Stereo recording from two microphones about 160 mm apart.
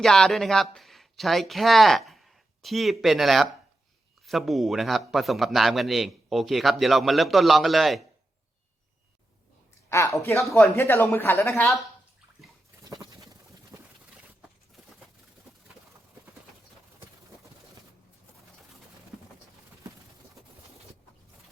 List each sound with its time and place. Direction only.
0.0 s a man's voice: 5° left (ahead or behind)
9.9 s speech: 20° left (ahead or behind)